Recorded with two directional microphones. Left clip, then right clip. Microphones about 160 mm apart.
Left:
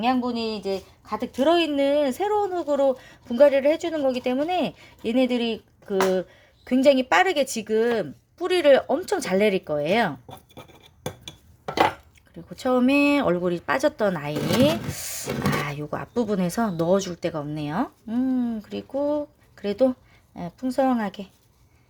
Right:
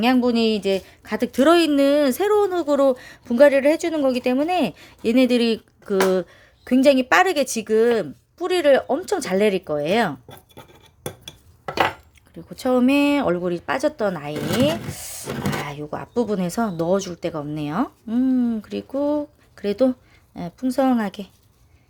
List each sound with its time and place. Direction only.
0.0 s a woman's voice: 50° right (ahead or behind); by 10.6 s centre (ahead or behind)
12.5 s speech: 10° right (ahead or behind)